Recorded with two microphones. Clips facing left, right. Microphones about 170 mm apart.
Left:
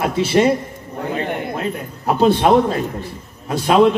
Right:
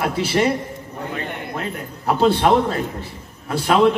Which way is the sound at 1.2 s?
55° left (ahead or behind).